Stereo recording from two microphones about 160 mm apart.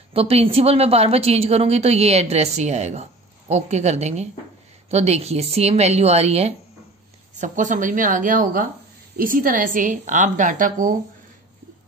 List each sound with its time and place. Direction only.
0.1 s a woman's voice: 40° right (ahead or behind)
7.3 s a woman's voice: 50° right (ahead or behind)